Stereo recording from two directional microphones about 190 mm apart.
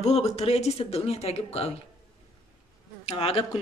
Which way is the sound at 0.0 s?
35° left (ahead or behind).